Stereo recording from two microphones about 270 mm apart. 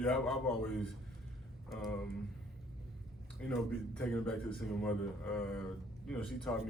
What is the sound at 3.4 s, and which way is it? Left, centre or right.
Speech, centre.